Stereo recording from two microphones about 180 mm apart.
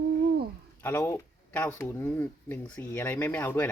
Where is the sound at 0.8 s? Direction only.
10° left (ahead or behind).